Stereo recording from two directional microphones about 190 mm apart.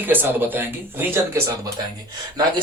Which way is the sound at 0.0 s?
10° right (ahead or behind).